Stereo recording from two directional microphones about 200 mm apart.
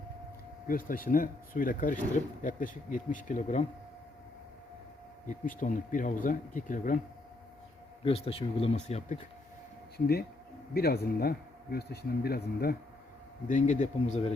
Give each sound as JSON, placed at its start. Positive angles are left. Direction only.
{"t": 0.7, "sound": "speech", "side_deg": 45}
{"t": 5.5, "sound": "speech", "side_deg": 40}
{"t": 8.0, "sound": "speech", "side_deg": 30}
{"t": 10.8, "sound": "speech", "side_deg": 50}
{"t": 13.5, "sound": "speech", "side_deg": 40}